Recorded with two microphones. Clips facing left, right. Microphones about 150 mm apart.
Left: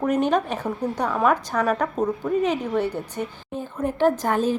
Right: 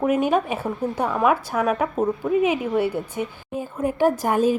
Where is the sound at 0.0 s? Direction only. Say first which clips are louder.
Right 1 dB; 5° right (ahead or behind).